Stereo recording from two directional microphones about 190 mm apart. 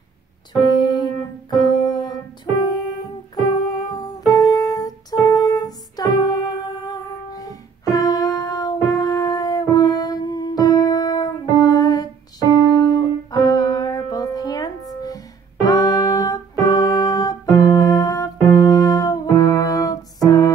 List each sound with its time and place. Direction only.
0.8 s music: 20° left (ahead or behind)
3.5 s music: 20° left (ahead or behind)